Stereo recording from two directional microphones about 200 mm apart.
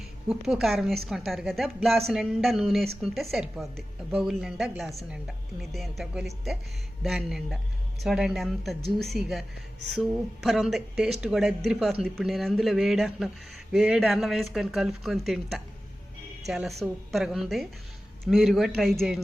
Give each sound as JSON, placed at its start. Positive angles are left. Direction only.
{"t": 0.3, "sound": "speech", "side_deg": 0}
{"t": 8.8, "sound": "speech", "side_deg": -50}
{"t": 9.8, "sound": "speech", "side_deg": 0}